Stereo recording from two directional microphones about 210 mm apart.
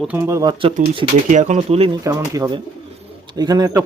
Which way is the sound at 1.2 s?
35° right (ahead or behind).